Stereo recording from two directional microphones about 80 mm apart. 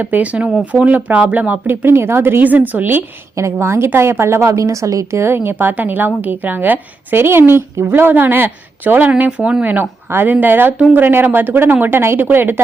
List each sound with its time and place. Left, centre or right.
0.0 s a woman's voice: centre
3.3 s a woman's voice: right